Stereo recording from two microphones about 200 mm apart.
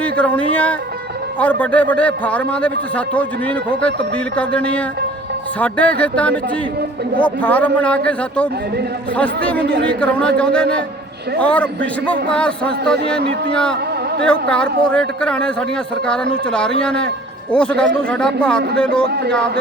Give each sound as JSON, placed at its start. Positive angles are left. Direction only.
{"t": 0.0, "sound": "a man's voice", "side_deg": 5}
{"t": 19.0, "sound": "a man's voice", "side_deg": -55}